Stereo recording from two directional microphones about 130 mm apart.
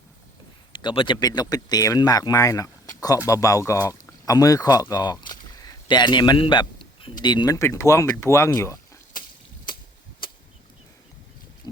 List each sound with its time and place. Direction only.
0.7 s speech: 35° left (ahead or behind); by 8.8 s 20° left (ahead or behind)